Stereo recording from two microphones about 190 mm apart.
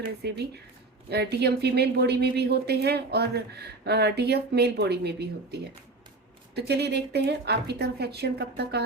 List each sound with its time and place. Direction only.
0.2 s speech: 60° right (ahead or behind)